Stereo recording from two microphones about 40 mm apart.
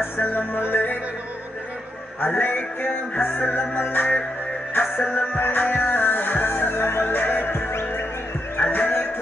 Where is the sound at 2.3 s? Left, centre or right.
Left.